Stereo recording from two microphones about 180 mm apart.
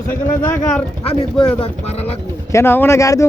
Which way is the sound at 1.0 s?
30° left (ahead or behind).